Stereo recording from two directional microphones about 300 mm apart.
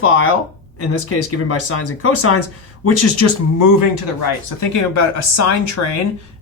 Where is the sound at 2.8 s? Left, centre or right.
Left.